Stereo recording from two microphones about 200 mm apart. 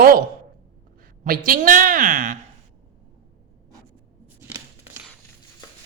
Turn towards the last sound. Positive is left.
turn(degrees=-10)  # may be behind; listen again after turning